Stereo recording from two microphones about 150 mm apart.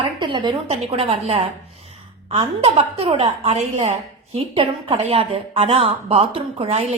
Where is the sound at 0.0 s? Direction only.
35° right (ahead or behind).